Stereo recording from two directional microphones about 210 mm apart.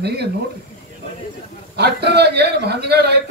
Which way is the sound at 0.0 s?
50° right (ahead or behind).